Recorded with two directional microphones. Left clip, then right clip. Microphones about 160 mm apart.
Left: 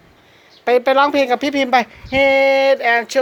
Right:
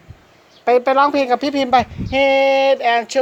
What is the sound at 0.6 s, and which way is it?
Speech, centre (ahead or behind).